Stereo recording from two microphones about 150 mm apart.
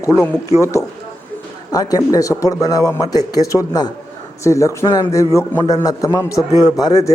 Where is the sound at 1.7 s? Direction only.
25° left (ahead or behind).